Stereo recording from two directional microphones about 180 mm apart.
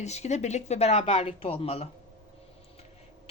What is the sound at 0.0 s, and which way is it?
Speech, 40° left (ahead or behind).